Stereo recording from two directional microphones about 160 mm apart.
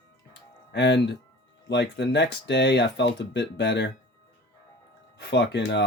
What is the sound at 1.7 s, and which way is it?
Speech, 90° left.